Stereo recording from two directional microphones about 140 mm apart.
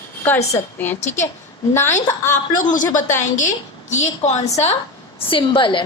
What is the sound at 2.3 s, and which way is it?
A man's voice, 65° left (ahead or behind).